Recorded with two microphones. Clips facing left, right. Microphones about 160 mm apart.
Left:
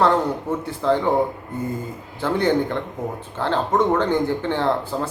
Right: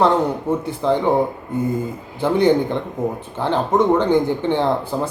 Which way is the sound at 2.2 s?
15° right (ahead or behind).